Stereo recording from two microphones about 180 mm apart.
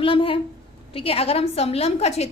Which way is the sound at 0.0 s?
30° left (ahead or behind).